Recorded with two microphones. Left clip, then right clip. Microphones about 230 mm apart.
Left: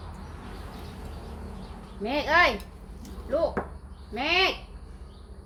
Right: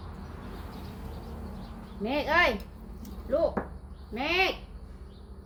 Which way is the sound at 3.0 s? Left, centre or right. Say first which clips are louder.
Even; centre.